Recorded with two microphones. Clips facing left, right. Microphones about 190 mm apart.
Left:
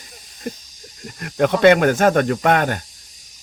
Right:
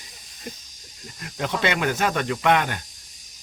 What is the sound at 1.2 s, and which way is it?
Speech, 60° left (ahead or behind).